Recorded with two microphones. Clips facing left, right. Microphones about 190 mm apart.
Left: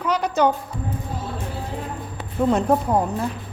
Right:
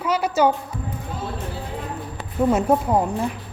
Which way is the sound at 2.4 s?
5° right (ahead or behind).